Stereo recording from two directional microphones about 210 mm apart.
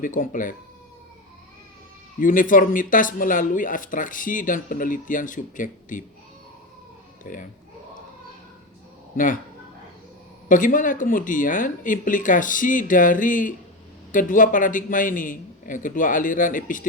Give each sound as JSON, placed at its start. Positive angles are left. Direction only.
{"t": 0.0, "sound": "speech", "side_deg": 40}
{"t": 2.2, "sound": "speech", "side_deg": 40}
{"t": 7.3, "sound": "speech", "side_deg": 40}
{"t": 9.1, "sound": "speech", "side_deg": 40}
{"t": 10.5, "sound": "speech", "side_deg": 40}